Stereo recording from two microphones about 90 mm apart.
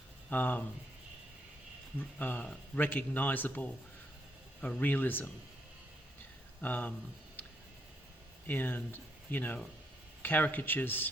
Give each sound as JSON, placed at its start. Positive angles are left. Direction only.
{"t": 0.3, "sound": "speech", "side_deg": 20}
{"t": 2.0, "sound": "speech", "side_deg": 20}
{"t": 6.6, "sound": "speech", "side_deg": 20}
{"t": 8.4, "sound": "speech", "side_deg": 20}